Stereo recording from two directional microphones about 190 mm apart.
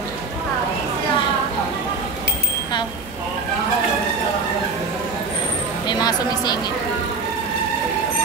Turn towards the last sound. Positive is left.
turn(degrees=20)  # may be behind; listen again after turning